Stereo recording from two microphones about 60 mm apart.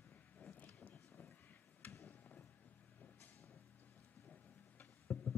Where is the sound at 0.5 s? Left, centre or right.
Left.